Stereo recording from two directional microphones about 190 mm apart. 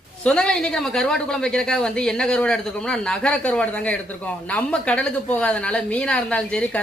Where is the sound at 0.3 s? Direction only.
5° left (ahead or behind).